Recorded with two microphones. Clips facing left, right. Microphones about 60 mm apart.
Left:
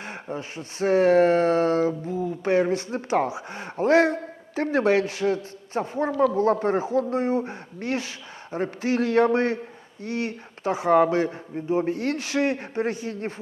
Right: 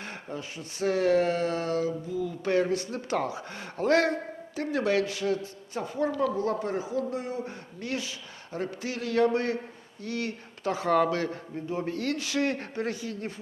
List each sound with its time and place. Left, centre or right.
0.0 s speech: left
4.5 s speech: left